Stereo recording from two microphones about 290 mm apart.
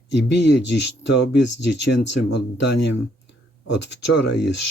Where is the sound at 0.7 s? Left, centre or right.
Left.